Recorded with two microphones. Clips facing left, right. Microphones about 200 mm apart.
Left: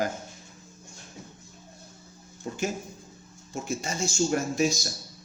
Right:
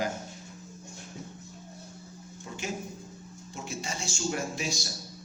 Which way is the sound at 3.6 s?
45° left (ahead or behind).